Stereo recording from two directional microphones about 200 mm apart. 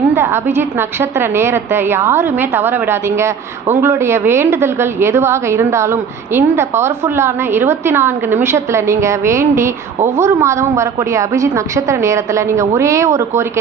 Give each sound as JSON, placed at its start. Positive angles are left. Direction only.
{"t": 0.1, "sound": "a woman's voice", "side_deg": -10}